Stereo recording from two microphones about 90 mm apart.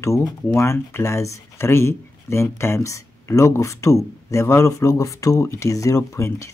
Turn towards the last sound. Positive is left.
turn(degrees=35)  # may be behind; listen again after turning